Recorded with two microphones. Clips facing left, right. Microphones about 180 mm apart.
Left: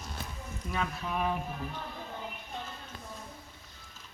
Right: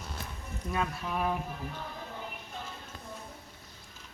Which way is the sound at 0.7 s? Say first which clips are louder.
Right 1 dB; centre (ahead or behind).